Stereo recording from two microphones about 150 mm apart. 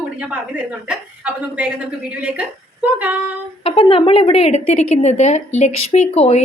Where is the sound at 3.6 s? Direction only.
40° left (ahead or behind).